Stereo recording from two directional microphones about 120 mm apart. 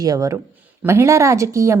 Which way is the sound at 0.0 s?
30° right (ahead or behind).